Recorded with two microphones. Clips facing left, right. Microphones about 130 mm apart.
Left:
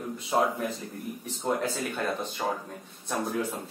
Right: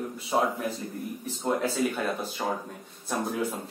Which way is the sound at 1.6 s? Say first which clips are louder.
Right 3 dB; 5° right (ahead or behind).